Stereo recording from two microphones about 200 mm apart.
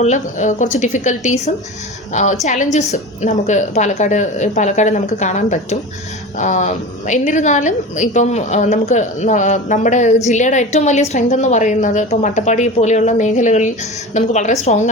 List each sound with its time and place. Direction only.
0.0 s a woman's voice: 35° left (ahead or behind)